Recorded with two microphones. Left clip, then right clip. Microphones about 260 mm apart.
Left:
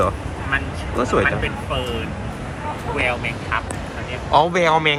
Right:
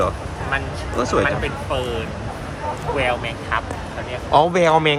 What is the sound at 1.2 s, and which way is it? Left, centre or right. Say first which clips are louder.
Speech: left 1 dB; right.